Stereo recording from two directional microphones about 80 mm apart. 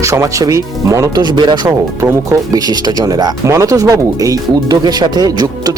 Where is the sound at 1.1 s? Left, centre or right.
Right.